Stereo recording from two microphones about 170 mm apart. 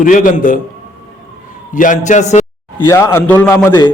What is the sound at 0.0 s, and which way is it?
Speech, 55° left (ahead or behind).